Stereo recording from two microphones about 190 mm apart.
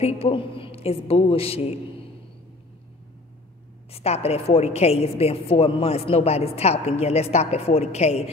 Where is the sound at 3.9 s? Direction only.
35° left (ahead or behind).